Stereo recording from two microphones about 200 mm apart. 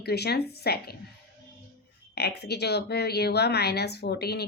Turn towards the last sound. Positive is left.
turn(degrees=55)  # may be behind; listen again after turning